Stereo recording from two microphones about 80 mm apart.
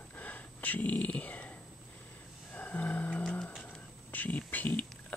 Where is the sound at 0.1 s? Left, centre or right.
Centre.